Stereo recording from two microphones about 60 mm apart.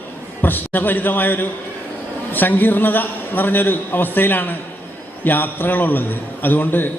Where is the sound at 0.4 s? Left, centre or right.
Left.